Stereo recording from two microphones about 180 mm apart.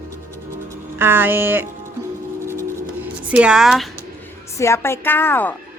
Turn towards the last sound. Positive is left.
turn(degrees=10)  # may be behind; listen again after turning